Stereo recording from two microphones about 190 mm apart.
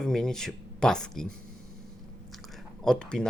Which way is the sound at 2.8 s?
5° left (ahead or behind).